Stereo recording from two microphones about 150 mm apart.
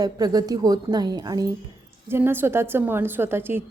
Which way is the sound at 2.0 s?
15° right (ahead or behind).